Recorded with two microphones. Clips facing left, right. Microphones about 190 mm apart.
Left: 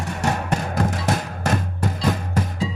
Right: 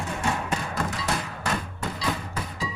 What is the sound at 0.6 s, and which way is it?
Music, 50° left (ahead or behind).